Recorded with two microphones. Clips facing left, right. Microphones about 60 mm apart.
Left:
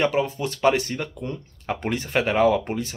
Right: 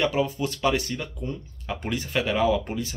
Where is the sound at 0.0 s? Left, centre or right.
Left.